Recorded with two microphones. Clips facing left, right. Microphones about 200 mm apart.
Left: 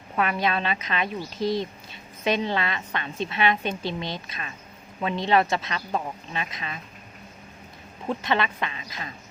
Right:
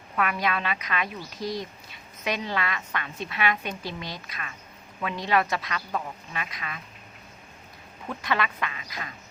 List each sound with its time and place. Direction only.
0.2 s speech: 25° left (ahead or behind)
8.0 s speech: 25° left (ahead or behind)